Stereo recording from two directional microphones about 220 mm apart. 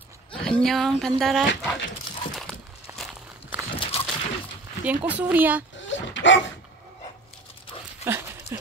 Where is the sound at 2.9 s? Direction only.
10° right (ahead or behind).